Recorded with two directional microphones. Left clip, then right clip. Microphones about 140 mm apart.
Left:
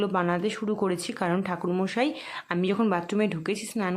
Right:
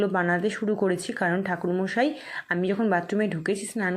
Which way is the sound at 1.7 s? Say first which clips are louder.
Even; 15° left (ahead or behind).